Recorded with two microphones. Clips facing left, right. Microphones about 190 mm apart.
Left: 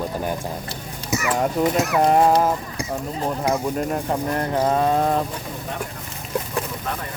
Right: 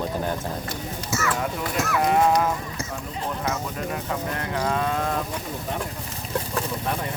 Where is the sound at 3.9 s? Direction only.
40° left (ahead or behind).